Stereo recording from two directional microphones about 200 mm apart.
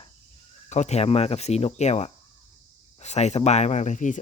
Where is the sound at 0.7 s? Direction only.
35° left (ahead or behind).